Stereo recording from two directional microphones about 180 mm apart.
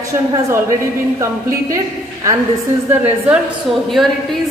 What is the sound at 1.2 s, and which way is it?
Speech, 15° right (ahead or behind).